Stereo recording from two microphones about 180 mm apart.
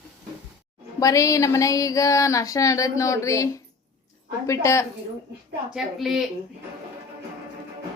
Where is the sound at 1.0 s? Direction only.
20° left (ahead or behind).